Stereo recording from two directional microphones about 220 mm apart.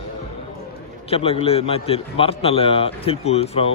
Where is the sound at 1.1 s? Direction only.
25° left (ahead or behind).